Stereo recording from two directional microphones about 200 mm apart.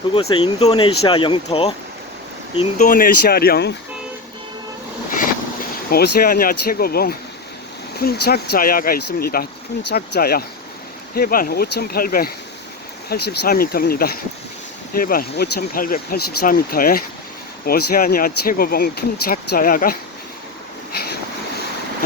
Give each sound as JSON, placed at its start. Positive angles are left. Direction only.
{"t": 0.1, "sound": "speech", "side_deg": 25}
{"t": 5.9, "sound": "speech", "side_deg": 50}